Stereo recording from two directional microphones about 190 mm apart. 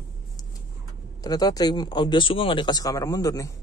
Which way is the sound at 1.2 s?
20° left (ahead or behind).